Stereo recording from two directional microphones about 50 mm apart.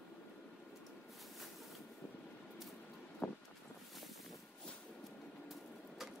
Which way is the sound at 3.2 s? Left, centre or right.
Left.